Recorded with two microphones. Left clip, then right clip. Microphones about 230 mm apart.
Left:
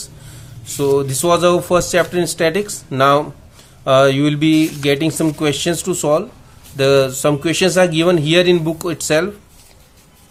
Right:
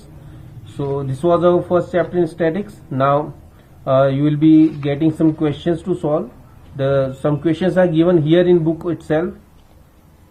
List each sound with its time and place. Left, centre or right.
0.8 s a man's voice: left